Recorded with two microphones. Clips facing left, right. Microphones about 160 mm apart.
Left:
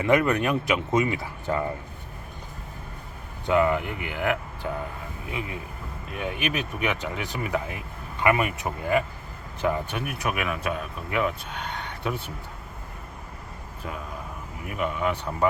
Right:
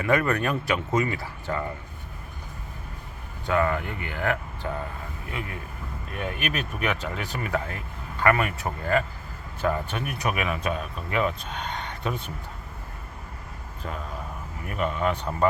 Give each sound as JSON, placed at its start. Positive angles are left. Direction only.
{"t": 0.0, "sound": "speech", "side_deg": 20}
{"t": 3.4, "sound": "speech", "side_deg": 15}
{"t": 6.1, "sound": "speech", "side_deg": 5}
{"t": 10.0, "sound": "speech", "side_deg": 5}
{"t": 14.7, "sound": "speech", "side_deg": 5}